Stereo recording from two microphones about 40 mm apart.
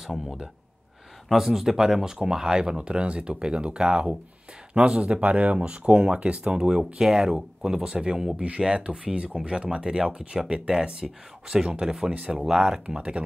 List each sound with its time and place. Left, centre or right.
1.3 s speech: centre; by 5.2 s right
5.2 s speech: right; by 12.8 s centre
12.8 s speech: right